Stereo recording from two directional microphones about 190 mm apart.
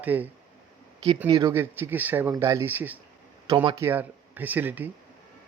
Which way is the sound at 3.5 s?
25° right (ahead or behind).